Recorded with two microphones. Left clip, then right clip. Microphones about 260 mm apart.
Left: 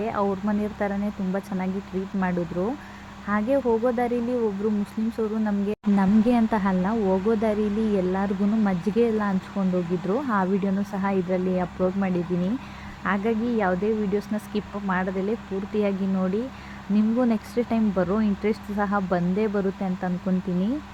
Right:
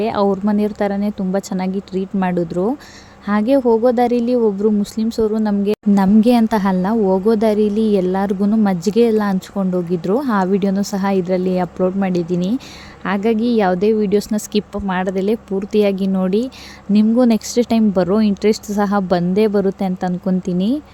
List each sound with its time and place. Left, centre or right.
0.0 s speech: right
2.1 s speech: right
5.1 s a woman's voice: right